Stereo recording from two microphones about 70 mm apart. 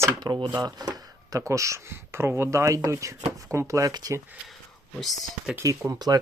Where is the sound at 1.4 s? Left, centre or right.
Right.